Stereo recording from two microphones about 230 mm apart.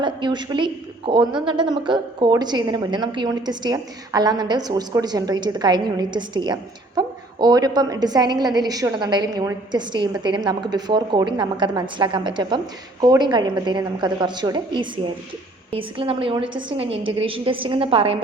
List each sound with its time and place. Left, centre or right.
0.0 s a woman's voice: centre